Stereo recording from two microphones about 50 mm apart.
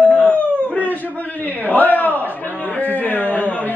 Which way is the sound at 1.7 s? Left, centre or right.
Left.